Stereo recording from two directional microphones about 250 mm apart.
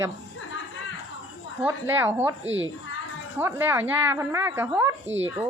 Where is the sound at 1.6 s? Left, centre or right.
Centre.